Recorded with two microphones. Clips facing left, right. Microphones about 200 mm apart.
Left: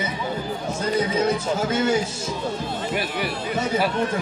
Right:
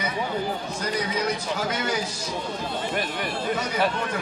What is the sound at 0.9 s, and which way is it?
Speech, 25° left (ahead or behind).